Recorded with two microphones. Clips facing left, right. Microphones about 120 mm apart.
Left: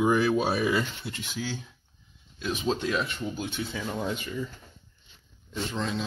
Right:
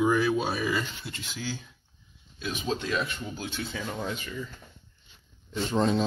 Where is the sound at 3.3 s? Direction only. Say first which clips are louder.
Left 2 dB; 5° left (ahead or behind).